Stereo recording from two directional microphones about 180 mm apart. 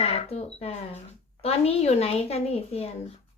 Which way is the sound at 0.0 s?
35° left (ahead or behind).